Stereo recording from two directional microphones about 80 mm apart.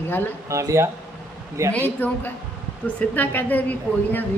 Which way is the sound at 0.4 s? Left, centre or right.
Right.